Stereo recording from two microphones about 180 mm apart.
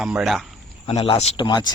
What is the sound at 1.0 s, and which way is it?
Speech, 35° left (ahead or behind).